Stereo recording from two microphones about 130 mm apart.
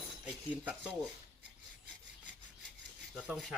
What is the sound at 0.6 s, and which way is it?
Speech, 10° right (ahead or behind).